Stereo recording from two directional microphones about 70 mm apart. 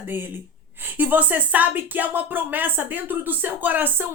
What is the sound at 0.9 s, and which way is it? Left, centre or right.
Speech, right.